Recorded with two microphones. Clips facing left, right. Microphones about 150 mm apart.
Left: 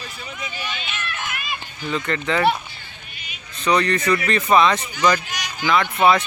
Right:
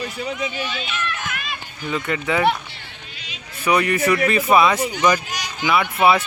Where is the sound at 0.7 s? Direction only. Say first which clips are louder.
Right 3 dB; 35° right (ahead or behind).